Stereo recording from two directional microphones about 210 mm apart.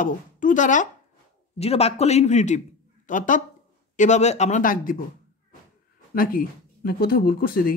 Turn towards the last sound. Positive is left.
turn(degrees=45)  # may be behind; listen again after turning